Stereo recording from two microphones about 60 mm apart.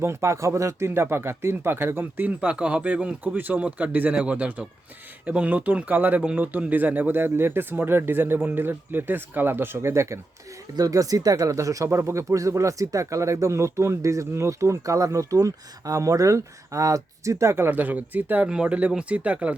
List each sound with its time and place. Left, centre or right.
0.0 s speech: right
0.9 s speech: right
2.4 s speech: right
10.8 s speech: right
17.7 s speech: right
18.4 s speech: centre